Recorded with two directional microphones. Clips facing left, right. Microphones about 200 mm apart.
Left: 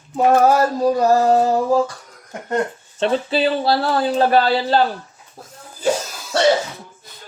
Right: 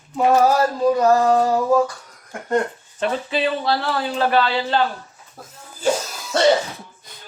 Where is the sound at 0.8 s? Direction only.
30° left (ahead or behind).